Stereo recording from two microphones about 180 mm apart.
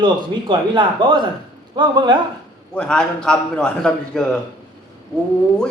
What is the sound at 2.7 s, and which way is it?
A man's voice, 5° left (ahead or behind).